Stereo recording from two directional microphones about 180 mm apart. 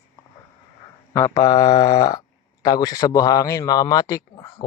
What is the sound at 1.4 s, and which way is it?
Speech, 20° left (ahead or behind).